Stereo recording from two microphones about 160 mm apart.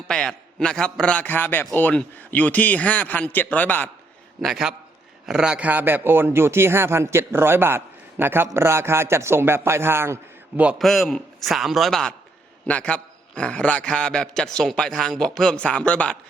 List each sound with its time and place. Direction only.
0.1 s a man's voice: 5° left (ahead or behind)
4.4 s a man's voice: centre (ahead or behind)
10.6 s a man's voice: 5° right (ahead or behind)